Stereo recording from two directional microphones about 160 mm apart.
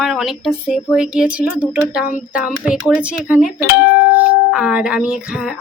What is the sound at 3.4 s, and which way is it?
Speech, 65° left (ahead or behind).